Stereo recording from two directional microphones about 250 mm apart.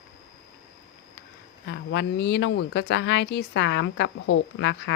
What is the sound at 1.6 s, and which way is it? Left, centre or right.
Speech, left.